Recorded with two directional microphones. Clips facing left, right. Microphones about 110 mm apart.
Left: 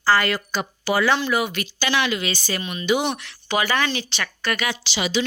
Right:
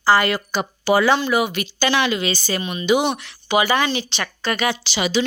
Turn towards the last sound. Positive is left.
turn(degrees=-45)  # may be behind; listen again after turning